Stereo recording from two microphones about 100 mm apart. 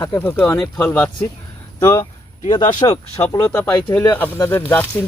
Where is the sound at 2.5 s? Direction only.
50° left (ahead or behind).